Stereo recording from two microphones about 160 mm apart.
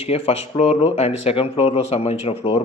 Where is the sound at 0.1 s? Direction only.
40° left (ahead or behind).